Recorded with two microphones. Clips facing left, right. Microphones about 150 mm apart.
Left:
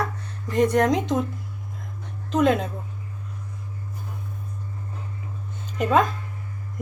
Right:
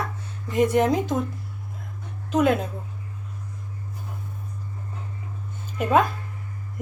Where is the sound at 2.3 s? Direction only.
5° right (ahead or behind).